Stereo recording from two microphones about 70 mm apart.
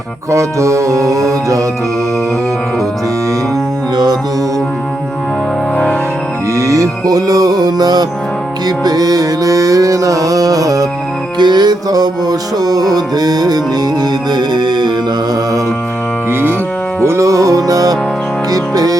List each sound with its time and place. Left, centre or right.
0.3 s music: right
5.7 s music: centre
6.6 s music: right
11.3 s music: right
14.0 s music: right
16.3 s music: right
17.0 s music: right